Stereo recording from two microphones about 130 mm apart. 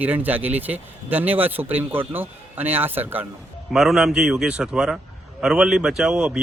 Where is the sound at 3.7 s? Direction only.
5° right (ahead or behind).